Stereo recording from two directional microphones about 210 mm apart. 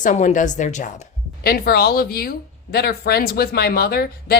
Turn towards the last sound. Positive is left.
turn(degrees=45)  # may be behind; listen again after turning